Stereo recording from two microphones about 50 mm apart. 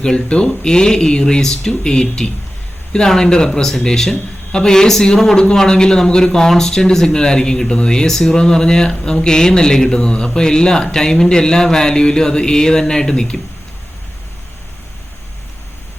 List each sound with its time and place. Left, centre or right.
0.0 s a man's voice: centre